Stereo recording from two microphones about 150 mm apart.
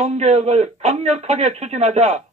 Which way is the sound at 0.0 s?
45° right (ahead or behind).